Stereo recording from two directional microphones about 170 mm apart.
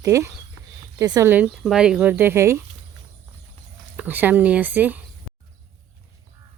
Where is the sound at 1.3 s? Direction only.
10° right (ahead or behind).